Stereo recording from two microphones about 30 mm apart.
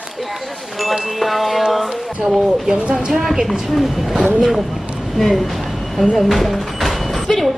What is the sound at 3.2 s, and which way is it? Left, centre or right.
Speech, centre.